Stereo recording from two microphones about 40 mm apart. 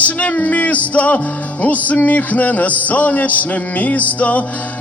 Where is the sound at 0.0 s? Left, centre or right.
Left.